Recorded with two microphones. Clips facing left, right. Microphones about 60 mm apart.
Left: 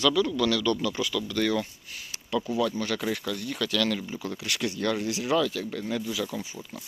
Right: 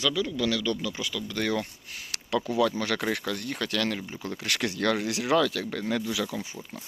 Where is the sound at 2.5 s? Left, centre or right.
Right.